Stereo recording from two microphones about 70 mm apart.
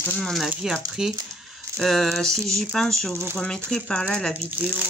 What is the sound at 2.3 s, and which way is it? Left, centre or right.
Speech, right.